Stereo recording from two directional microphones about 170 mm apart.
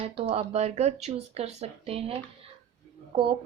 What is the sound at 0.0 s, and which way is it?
Speech, 35° right (ahead or behind).